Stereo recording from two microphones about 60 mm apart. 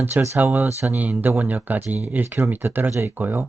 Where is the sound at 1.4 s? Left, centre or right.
Right.